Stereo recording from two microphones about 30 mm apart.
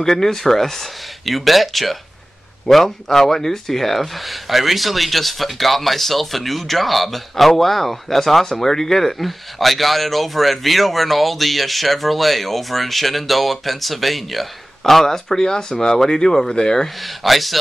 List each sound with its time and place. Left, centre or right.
0.0 s speech: centre
4.5 s speech: centre; by 16.8 s left
16.8 s speech: centre